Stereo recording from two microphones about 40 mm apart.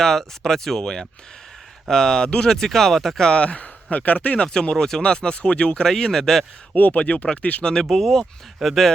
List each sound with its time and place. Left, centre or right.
0.0 s speech: centre
3.2 s speech: left
4.4 s speech: centre
5.9 s speech: centre
6.7 s speech: left
7.0 s speech: left
7.6 s speech: centre